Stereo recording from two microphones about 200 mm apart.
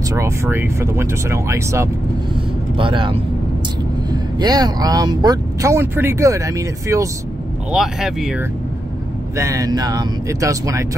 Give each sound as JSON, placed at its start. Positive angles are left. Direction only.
{"t": 0.1, "sound": "speech", "side_deg": -15}
{"t": 2.8, "sound": "speech", "side_deg": -25}
{"t": 7.7, "sound": "speech", "side_deg": 0}
{"t": 9.4, "sound": "speech", "side_deg": -15}